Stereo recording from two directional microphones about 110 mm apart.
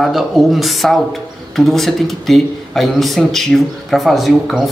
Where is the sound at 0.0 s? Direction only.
Centre (ahead or behind).